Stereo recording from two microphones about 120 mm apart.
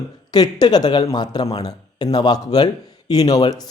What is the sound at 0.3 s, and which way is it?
Speech, 35° left (ahead or behind).